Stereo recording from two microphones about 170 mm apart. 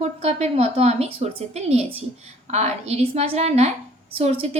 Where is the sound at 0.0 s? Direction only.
40° right (ahead or behind).